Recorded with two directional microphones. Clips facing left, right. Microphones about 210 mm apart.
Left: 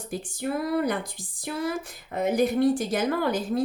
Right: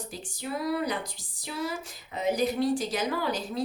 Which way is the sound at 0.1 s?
55° left (ahead or behind).